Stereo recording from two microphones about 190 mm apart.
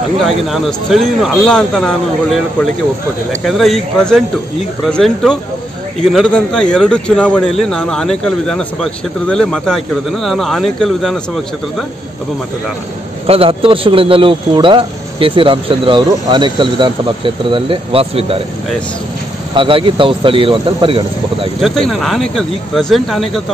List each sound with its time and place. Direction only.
0.5 s speech: centre (ahead or behind)
3.4 s speech: centre (ahead or behind)
13.3 s speech: 30° right (ahead or behind)
19.5 s speech: 25° right (ahead or behind)
21.5 s speech: centre (ahead or behind)